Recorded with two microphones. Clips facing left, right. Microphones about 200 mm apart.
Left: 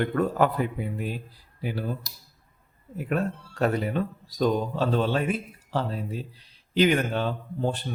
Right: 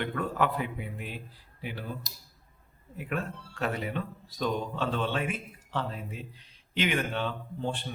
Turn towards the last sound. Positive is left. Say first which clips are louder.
# left 5 dB
turn(degrees=40)  # may be behind; listen again after turning